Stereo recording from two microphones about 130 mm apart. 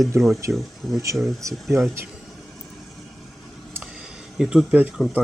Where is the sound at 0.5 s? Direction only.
Centre (ahead or behind).